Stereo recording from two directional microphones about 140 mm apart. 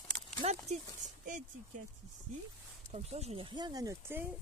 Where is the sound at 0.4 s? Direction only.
55° right (ahead or behind).